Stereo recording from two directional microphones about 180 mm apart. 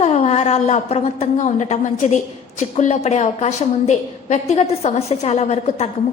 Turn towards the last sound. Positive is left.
turn(degrees=35)  # may be behind; listen again after turning